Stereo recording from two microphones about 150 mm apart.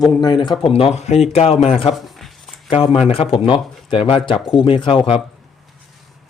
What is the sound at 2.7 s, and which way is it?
Speech, 40° left (ahead or behind).